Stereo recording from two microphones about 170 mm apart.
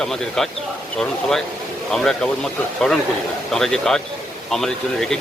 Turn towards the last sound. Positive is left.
turn(degrees=0)  # may be behind; listen again after turning